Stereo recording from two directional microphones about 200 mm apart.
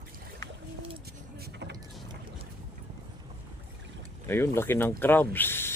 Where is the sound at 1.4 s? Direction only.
55° right (ahead or behind).